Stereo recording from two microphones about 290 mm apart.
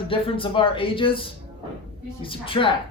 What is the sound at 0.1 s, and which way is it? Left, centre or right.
Speech, centre.